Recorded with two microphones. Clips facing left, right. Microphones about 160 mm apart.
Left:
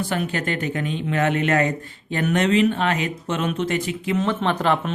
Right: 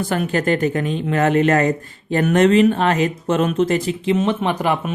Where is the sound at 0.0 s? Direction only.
45° right (ahead or behind).